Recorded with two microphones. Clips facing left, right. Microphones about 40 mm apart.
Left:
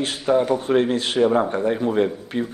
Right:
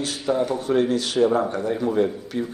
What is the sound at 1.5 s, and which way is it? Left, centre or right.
Speech, left.